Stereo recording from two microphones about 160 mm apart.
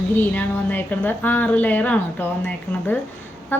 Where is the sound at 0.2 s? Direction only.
10° left (ahead or behind).